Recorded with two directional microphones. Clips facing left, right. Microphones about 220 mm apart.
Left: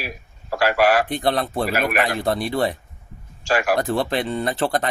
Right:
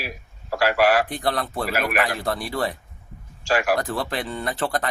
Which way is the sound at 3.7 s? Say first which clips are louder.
Left 5 dB; 25° left (ahead or behind).